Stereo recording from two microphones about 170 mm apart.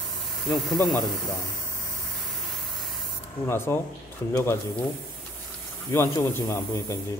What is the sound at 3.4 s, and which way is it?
Speech, 15° left (ahead or behind).